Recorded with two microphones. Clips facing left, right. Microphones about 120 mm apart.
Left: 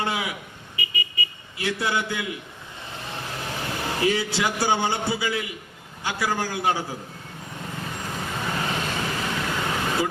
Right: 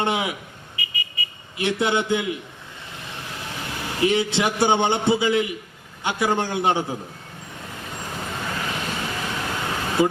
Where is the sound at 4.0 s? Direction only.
20° right (ahead or behind).